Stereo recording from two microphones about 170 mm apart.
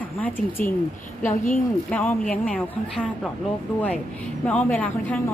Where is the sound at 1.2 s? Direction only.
50° left (ahead or behind).